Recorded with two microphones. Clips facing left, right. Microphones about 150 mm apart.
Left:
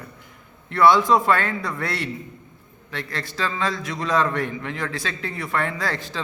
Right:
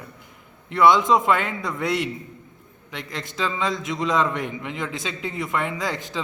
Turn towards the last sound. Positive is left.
turn(degrees=-20)  # may be behind; listen again after turning